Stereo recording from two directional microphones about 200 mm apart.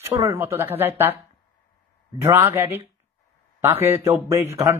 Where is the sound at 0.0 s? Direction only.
15° right (ahead or behind).